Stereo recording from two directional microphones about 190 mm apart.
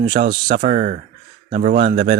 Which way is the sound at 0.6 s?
35° right (ahead or behind).